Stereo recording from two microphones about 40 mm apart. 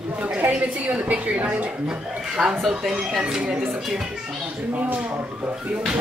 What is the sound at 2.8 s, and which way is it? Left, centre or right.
Speech, centre.